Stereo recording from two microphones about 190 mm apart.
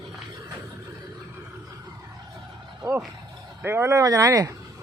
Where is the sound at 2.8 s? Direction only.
15° right (ahead or behind).